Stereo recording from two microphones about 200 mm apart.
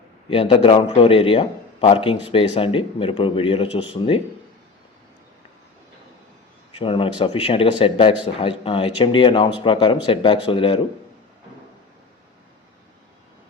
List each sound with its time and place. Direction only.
0.3 s a man's voice: 25° left (ahead or behind)
6.7 s a man's voice: 25° left (ahead or behind)